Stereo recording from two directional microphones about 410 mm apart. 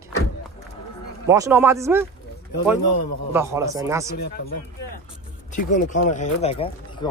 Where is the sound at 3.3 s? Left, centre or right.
Centre.